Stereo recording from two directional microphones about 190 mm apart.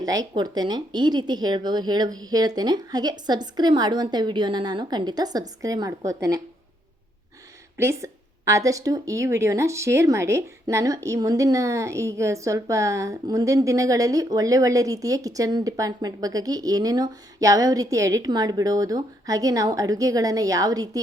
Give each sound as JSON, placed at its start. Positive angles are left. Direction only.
{"t": 0.0, "sound": "speech", "side_deg": -20}
{"t": 7.8, "sound": "speech", "side_deg": -15}